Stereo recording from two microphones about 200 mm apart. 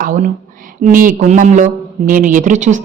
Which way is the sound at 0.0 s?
40° right (ahead or behind).